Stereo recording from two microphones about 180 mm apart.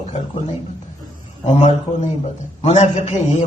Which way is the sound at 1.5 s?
40° left (ahead or behind).